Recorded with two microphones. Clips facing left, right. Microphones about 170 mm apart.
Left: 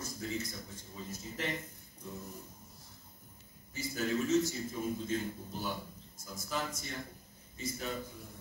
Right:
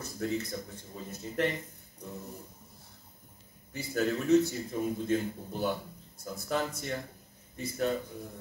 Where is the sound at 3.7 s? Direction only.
60° right (ahead or behind).